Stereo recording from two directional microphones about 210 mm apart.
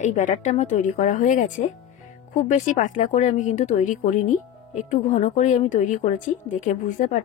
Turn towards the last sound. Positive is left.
turn(degrees=35)  # may be behind; listen again after turning